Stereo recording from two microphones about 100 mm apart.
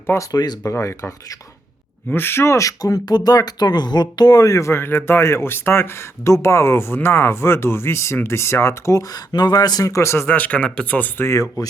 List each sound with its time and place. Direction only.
0.1 s speech: 35° left (ahead or behind)
0.7 s speech: 30° left (ahead or behind)
11.3 s speech: 35° left (ahead or behind)